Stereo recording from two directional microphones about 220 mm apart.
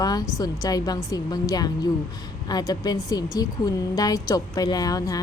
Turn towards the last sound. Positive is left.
turn(degrees=15)  # may be behind; listen again after turning